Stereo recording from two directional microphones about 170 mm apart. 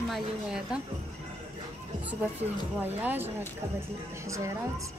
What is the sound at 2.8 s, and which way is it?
Speech, 10° right (ahead or behind).